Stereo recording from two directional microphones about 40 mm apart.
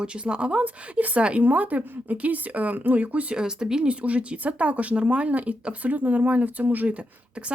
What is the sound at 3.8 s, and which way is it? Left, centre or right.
Speech, right.